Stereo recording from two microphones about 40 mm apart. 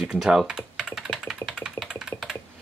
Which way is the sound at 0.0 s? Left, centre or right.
Centre.